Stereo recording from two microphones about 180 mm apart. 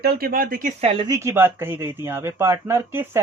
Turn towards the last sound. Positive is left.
turn(degrees=-15)  # may be behind; listen again after turning